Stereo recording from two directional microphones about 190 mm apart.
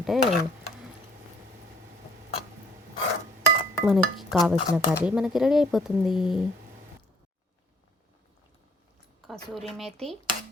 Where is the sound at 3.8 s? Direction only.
Centre (ahead or behind).